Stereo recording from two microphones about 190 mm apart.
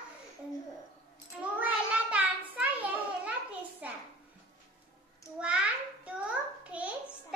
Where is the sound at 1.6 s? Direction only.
10° right (ahead or behind).